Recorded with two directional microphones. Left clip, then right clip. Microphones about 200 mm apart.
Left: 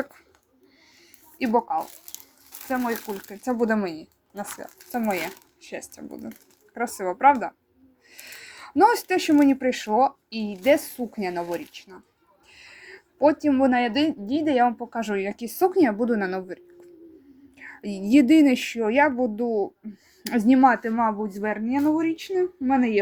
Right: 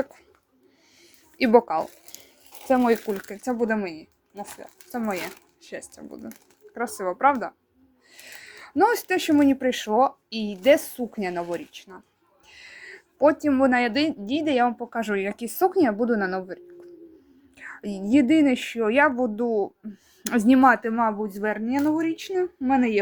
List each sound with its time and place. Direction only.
1.4 s a woman's voice: 30° right (ahead or behind)
3.1 s speech: 20° right (ahead or behind)
3.3 s speech: 5° right (ahead or behind)
3.7 s speech: 10° left (ahead or behind); by 23.0 s 5° right (ahead or behind)